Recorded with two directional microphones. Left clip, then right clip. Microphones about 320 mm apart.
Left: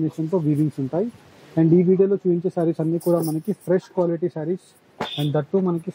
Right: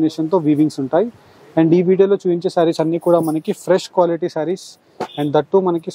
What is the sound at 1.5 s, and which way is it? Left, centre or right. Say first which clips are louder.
Speech: right 4 dB; right.